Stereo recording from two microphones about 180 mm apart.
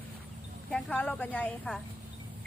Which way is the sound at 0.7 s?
5° left (ahead or behind).